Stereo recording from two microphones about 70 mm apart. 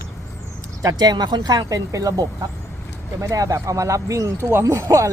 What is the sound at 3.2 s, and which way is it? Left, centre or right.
Speech, right.